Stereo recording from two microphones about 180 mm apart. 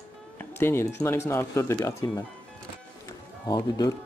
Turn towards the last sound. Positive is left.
turn(degrees=25)  # may be behind; listen again after turning